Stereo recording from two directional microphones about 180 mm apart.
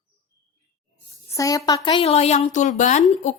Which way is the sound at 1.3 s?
20° left (ahead or behind).